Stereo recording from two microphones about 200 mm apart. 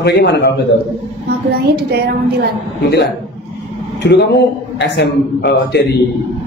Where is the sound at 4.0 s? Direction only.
55° left (ahead or behind).